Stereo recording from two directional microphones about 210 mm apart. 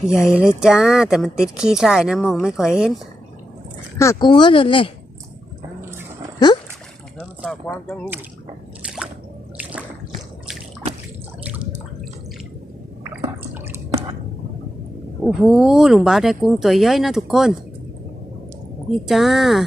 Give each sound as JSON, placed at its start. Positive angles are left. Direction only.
{"t": 0.1, "sound": "speech", "side_deg": -5}
{"t": 3.9, "sound": "speech", "side_deg": 15}
{"t": 7.2, "sound": "speech", "side_deg": -5}
{"t": 8.8, "sound": "squish", "side_deg": -5}
{"t": 9.6, "sound": "a sound", "side_deg": -5}
{"t": 11.4, "sound": "drip", "side_deg": -5}
{"t": 15.2, "sound": "speech", "side_deg": 0}
{"t": 18.9, "sound": "speech", "side_deg": 0}